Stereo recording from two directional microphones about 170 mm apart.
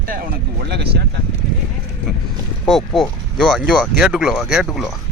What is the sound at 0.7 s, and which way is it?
Speech, 75° right (ahead or behind).